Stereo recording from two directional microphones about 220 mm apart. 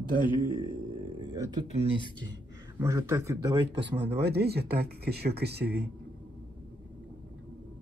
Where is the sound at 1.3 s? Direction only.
15° right (ahead or behind).